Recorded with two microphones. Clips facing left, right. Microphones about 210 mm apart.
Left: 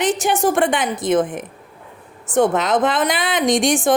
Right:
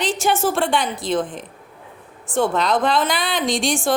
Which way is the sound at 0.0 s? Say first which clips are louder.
Left 2 dB; 20° left (ahead or behind).